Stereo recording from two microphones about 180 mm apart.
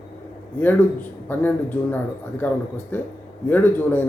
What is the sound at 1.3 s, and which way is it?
Speech, 10° left (ahead or behind).